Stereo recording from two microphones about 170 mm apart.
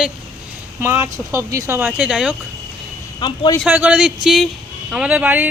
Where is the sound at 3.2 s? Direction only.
25° left (ahead or behind).